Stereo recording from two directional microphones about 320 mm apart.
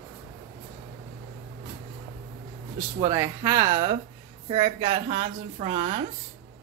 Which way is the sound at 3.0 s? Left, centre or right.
Centre.